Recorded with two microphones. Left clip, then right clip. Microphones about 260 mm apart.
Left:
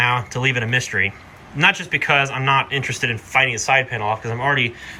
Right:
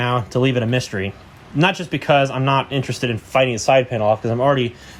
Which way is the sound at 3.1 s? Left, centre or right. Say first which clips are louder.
Right 1 dB; right.